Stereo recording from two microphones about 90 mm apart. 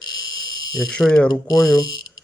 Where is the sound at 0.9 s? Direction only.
10° left (ahead or behind).